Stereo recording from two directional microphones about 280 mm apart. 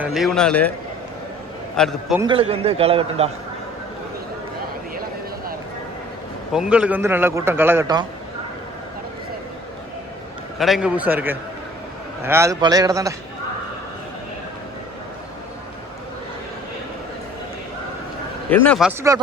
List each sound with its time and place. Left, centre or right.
0.0 s a man's voice: centre
1.7 s a man's voice: centre
2.2 s a man's voice: centre
6.5 s a man's voice: centre
10.6 s a man's voice: centre
18.5 s a man's voice: centre
18.9 s a man's voice: centre